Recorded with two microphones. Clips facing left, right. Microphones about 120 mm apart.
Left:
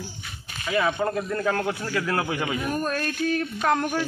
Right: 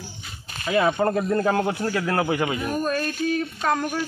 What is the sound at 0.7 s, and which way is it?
Speech, 20° right (ahead or behind).